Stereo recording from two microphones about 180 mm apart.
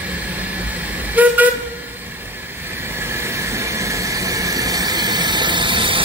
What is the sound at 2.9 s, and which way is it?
Train, 15° right (ahead or behind).